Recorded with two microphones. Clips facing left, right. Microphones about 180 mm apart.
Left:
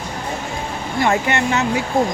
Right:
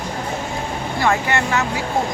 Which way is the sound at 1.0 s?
20° left (ahead or behind).